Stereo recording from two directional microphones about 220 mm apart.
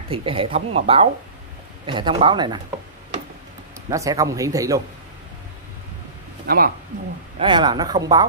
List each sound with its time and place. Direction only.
0.1 s speech: 25° right (ahead or behind)
3.9 s speech: 15° right (ahead or behind)
6.4 s speech: 45° right (ahead or behind)
7.3 s speech: 20° right (ahead or behind)